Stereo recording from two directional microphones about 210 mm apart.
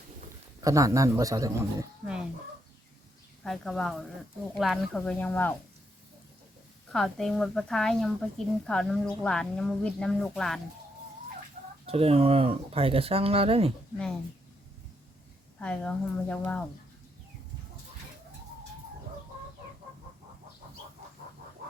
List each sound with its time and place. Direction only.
0.6 s speech: 15° right (ahead or behind)
3.4 s a woman's voice: centre (ahead or behind)
6.9 s a woman's voice: centre (ahead or behind)
11.9 s speech: 30° right (ahead or behind)
15.5 s a woman's voice: 5° left (ahead or behind)